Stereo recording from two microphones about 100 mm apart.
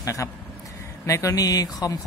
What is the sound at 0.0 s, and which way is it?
Speech, 35° left (ahead or behind).